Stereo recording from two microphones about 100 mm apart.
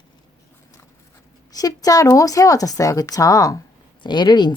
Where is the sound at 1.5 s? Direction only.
35° left (ahead or behind).